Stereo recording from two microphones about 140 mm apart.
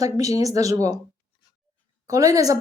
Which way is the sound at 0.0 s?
25° right (ahead or behind).